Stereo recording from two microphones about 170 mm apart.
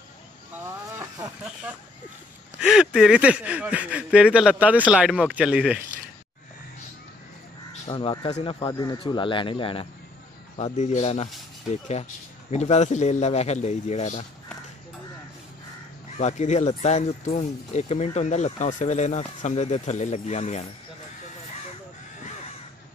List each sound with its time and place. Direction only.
2.6 s speech: 5° right (ahead or behind)
7.9 s speech: 30° left (ahead or behind)
10.6 s speech: 40° left (ahead or behind)
16.2 s speech: 45° left (ahead or behind)